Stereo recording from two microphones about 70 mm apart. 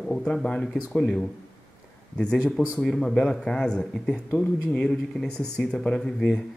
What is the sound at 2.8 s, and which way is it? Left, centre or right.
A man's voice, centre.